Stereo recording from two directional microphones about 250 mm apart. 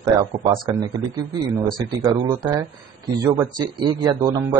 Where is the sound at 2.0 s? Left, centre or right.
Centre.